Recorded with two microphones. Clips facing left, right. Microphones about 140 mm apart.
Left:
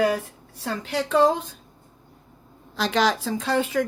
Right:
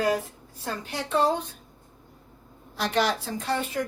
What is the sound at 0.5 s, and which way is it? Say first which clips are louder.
A woman's voice: left 6 dB; 85° left.